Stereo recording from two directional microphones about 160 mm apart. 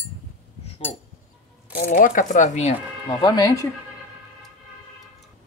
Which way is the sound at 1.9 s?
55° left (ahead or behind).